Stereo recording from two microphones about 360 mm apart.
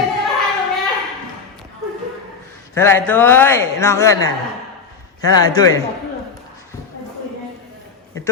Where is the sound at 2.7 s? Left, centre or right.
Centre.